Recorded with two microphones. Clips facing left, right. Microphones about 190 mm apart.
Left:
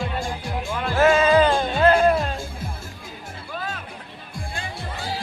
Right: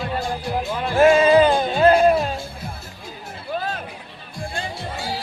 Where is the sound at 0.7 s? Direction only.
15° right (ahead or behind).